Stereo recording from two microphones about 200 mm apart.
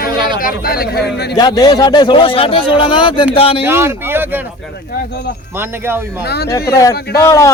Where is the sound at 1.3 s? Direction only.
20° left (ahead or behind).